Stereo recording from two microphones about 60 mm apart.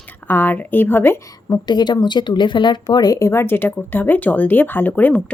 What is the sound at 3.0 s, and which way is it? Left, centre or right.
Speech, left.